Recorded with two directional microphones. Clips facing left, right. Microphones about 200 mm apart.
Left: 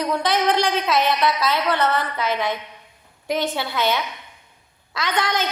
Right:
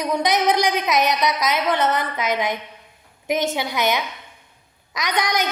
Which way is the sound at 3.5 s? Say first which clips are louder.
Right 1 dB; 15° right (ahead or behind).